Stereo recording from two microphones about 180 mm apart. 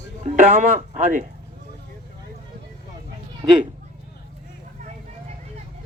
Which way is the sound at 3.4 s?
15° right (ahead or behind).